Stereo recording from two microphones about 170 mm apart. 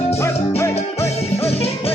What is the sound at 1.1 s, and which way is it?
Music, 35° left (ahead or behind).